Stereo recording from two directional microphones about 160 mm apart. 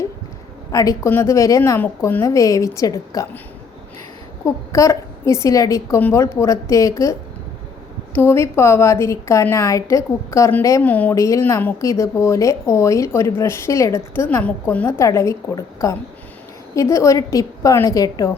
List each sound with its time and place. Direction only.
0.7 s a woman's voice: 20° left (ahead or behind)
4.4 s a woman's voice: 20° left (ahead or behind)